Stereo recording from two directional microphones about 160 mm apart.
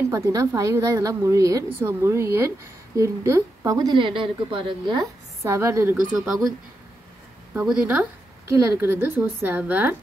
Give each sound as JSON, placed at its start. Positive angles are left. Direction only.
{"t": 0.0, "sound": "a woman's voice", "side_deg": -20}
{"t": 7.6, "sound": "a woman's voice", "side_deg": -5}